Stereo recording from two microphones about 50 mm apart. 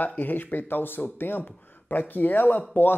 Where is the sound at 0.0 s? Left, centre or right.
Left.